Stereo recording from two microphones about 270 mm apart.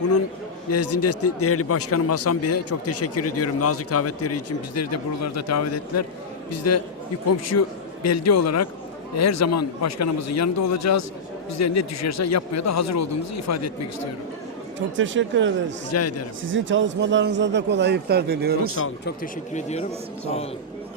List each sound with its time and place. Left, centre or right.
0.7 s a man's voice: left
14.8 s speech: right
15.9 s a man's voice: left
16.5 s a man's voice: right
19.0 s speech: left